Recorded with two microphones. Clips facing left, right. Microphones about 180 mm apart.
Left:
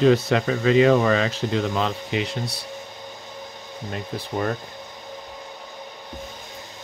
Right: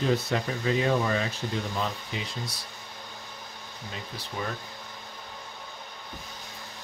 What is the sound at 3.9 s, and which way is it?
Speech, 50° left (ahead or behind).